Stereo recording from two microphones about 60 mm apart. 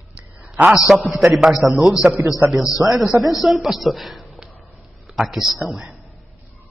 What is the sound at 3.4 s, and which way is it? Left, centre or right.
A woman's voice, centre.